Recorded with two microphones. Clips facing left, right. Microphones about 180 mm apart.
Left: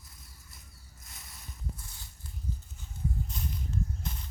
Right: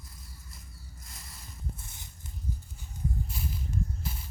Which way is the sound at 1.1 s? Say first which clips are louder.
Even; centre (ahead or behind).